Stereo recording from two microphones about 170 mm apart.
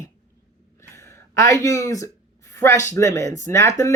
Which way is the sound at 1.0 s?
15° left (ahead or behind).